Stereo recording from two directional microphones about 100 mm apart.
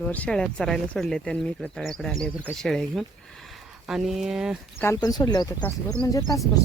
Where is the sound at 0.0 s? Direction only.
15° left (ahead or behind); by 4.5 s 5° right (ahead or behind).